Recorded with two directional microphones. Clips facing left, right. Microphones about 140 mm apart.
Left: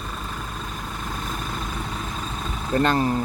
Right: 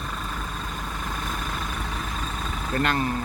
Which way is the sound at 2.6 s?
25° left (ahead or behind).